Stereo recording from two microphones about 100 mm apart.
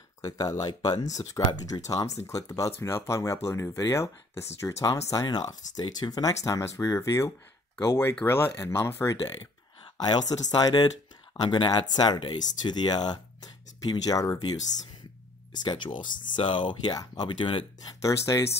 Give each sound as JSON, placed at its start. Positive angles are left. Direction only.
{"t": 0.2, "sound": "speech", "side_deg": 40}
{"t": 9.9, "sound": "speech", "side_deg": 40}
{"t": 15.5, "sound": "speech", "side_deg": 45}
{"t": 18.0, "sound": "speech", "side_deg": 30}